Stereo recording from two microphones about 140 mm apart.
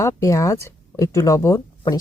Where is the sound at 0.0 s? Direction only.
20° left (ahead or behind).